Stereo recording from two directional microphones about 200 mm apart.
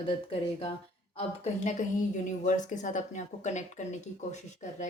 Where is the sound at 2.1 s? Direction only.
40° left (ahead or behind).